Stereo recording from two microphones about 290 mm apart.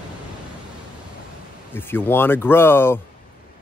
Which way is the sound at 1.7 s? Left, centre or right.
Centre.